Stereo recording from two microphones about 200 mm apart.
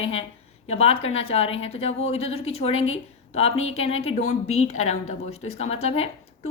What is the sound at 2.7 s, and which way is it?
Speech, 85° left.